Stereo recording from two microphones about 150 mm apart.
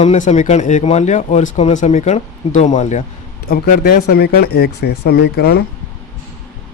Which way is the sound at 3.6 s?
75° left (ahead or behind).